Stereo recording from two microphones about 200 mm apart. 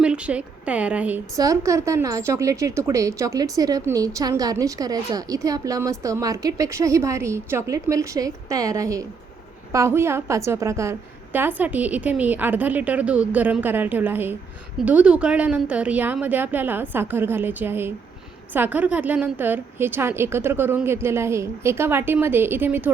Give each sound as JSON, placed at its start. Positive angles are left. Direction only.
{"t": 0.0, "sound": "a woman's voice", "side_deg": -5}